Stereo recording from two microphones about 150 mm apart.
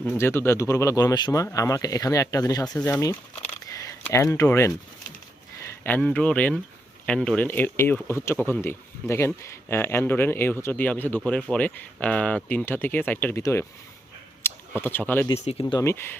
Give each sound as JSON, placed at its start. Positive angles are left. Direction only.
{"t": 0.2, "sound": "speech", "side_deg": 15}
{"t": 14.8, "sound": "speech", "side_deg": 15}
{"t": 15.4, "sound": "speech", "side_deg": 45}
{"t": 15.8, "sound": "speech", "side_deg": 15}